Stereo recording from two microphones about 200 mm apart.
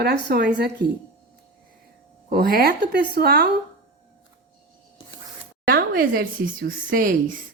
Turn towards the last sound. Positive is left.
turn(degrees=-45)  # may be behind; listen again after turning